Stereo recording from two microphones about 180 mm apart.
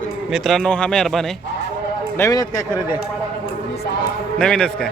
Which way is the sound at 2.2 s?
20° left (ahead or behind).